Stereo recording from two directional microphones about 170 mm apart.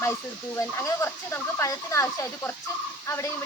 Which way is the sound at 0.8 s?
15° left (ahead or behind).